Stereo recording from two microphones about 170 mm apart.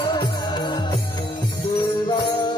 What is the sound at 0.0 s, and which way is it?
Music, 25° left (ahead or behind).